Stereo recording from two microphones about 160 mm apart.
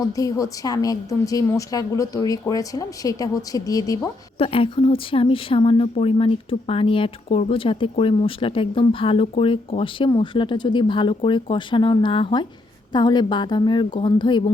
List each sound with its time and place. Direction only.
0.0 s a woman's voice: 20° left (ahead or behind)
4.4 s a woman's voice: 35° left (ahead or behind)